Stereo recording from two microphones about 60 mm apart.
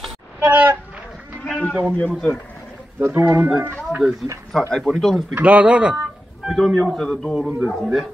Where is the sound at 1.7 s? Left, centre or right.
Right.